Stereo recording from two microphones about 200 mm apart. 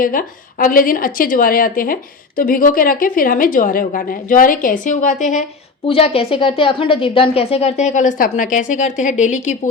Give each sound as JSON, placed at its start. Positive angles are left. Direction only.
{"t": 0.0, "sound": "a woman's voice", "side_deg": 45}